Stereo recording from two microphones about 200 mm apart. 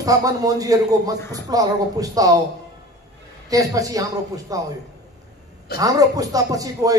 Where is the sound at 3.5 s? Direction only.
15° right (ahead or behind).